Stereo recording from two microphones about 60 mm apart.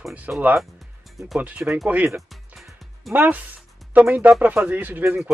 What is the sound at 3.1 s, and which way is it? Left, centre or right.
Music, right.